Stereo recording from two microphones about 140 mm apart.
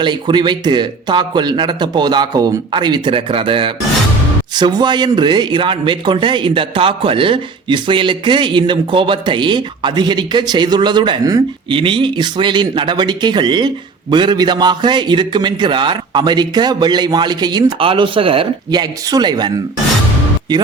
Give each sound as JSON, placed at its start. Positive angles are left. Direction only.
{"t": 0.0, "sound": "a man's voice", "side_deg": -35}
{"t": 11.7, "sound": "a man's voice", "side_deg": -40}
{"t": 18.7, "sound": "a man's voice", "side_deg": -30}